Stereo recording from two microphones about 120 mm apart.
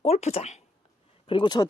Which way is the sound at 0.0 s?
60° left (ahead or behind).